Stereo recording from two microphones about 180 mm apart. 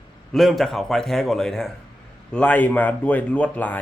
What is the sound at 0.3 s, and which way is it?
A man's voice, centre (ahead or behind).